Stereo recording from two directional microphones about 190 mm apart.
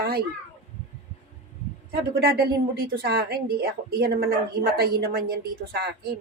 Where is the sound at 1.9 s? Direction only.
55° right (ahead or behind).